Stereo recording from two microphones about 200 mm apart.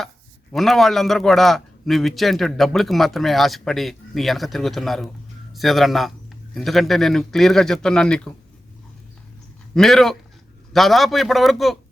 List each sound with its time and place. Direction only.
0.5 s a man's voice: centre (ahead or behind)
9.7 s a man's voice: centre (ahead or behind)